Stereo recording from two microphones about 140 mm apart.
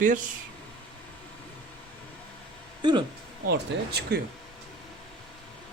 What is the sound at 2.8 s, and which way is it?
Speech, 35° right (ahead or behind).